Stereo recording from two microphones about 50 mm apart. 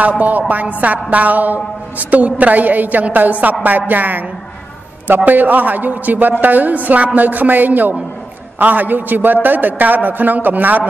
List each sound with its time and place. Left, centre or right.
0.2 s a woman's voice: right